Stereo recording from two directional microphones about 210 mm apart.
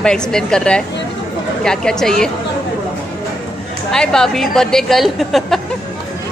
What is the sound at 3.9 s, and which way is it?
A woman's voice, 5° left (ahead or behind).